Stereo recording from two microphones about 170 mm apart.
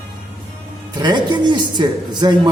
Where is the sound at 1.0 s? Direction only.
25° right (ahead or behind).